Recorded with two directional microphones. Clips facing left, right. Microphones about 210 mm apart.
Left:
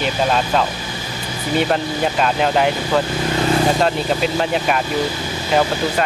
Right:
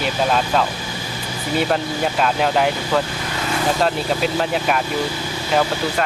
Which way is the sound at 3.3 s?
35° left (ahead or behind).